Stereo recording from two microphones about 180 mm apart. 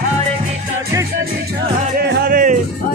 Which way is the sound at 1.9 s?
60° right (ahead or behind).